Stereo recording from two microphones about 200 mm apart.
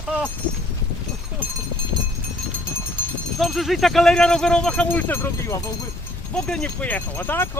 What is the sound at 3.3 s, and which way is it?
Speech, centre (ahead or behind).